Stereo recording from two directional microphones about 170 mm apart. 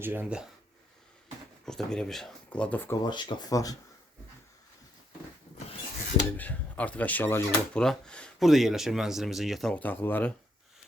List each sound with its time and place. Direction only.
0.0 s speech: 10° right (ahead or behind)
1.6 s speech: 5° left (ahead or behind)
3.0 s speech: 25° left (ahead or behind)
6.3 s speech: 10° left (ahead or behind)